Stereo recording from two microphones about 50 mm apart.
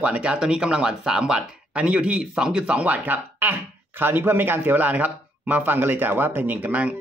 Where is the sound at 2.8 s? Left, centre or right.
Right.